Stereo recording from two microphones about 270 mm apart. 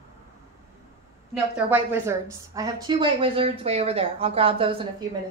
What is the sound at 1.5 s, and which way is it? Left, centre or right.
A woman's voice, centre.